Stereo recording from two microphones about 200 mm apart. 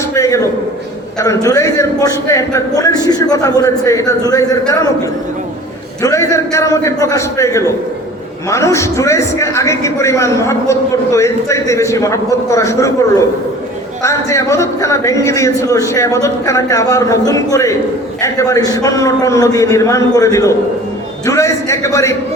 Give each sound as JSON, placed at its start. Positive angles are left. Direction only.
{"t": 0.0, "sound": "a sound", "side_deg": 15}
{"t": 1.2, "sound": "a man's voice", "side_deg": 15}
{"t": 6.0, "sound": "a man's voice", "side_deg": 15}